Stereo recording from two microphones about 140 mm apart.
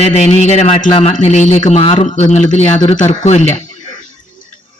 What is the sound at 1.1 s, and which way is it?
Speech, 60° left (ahead or behind).